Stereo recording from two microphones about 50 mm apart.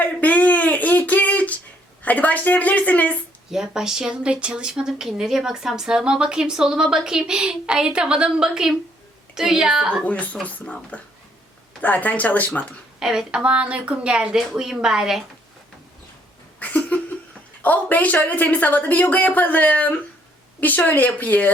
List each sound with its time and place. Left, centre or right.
0.0 s a sound: left
2.0 s a woman's voice: left
3.5 s a woman's voice: centre
4.8 s a woman's voice: centre
10.0 s a woman's voice: left
13.0 s a woman's voice: centre
13.4 s speech: right
14.3 s a woman's voice: centre
16.6 s laughter: left
17.6 s a woman's voice: left